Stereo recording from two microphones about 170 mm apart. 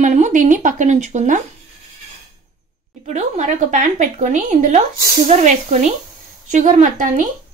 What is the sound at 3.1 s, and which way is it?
A woman's voice, 45° right (ahead or behind).